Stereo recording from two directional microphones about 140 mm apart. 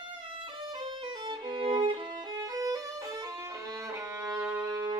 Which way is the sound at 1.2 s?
35° right (ahead or behind).